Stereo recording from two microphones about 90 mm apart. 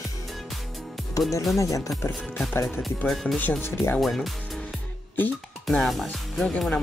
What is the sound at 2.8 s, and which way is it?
Speech, 5° left (ahead or behind).